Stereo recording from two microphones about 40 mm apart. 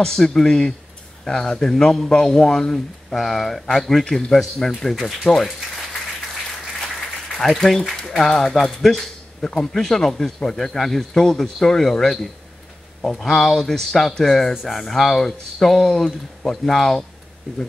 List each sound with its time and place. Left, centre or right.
0.0 s a man's voice: centre
7.3 s a man's voice: centre
14.5 s a man's voice: centre